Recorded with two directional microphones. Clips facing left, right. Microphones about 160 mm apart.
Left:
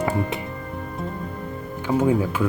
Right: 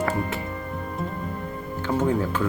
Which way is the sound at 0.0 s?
15° left (ahead or behind).